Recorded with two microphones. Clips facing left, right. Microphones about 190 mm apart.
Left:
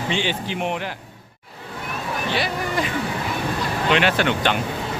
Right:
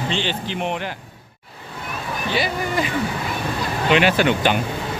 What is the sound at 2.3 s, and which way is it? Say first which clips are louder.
Speech: right 3 dB; centre (ahead or behind).